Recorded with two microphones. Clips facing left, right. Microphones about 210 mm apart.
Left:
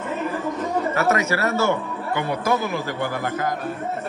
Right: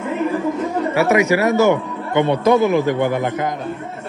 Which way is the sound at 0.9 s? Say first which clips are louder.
Right 9 dB; 15° right (ahead or behind).